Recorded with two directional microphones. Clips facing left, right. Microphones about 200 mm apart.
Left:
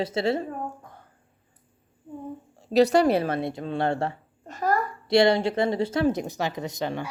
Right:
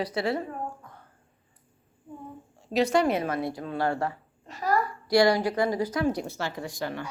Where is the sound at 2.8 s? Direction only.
35° left (ahead or behind).